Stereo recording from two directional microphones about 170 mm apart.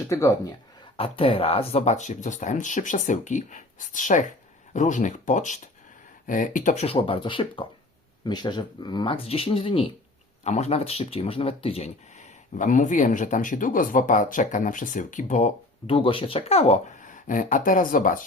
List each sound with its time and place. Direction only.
0.1 s speech: 15° left (ahead or behind)
0.9 s speech: 35° left (ahead or behind); by 6.8 s 50° left (ahead or behind)
6.8 s speech: 30° left (ahead or behind)
12.5 s speech: 50° left (ahead or behind)
15.9 s speech: 30° left (ahead or behind); by 18.3 s 55° left (ahead or behind)